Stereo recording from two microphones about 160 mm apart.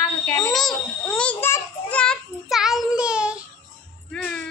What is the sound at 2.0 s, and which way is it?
Child singing, centre (ahead or behind).